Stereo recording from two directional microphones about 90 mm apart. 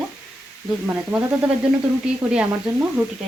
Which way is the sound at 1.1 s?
15° right (ahead or behind).